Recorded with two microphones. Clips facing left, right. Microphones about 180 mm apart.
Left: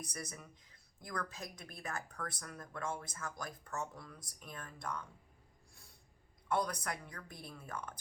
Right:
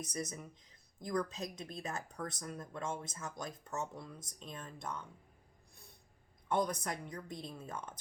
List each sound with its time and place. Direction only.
0.0 s speech: 20° right (ahead or behind)
6.5 s speech: 20° right (ahead or behind)